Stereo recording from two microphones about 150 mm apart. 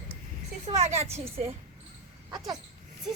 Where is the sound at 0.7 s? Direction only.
45° right (ahead or behind).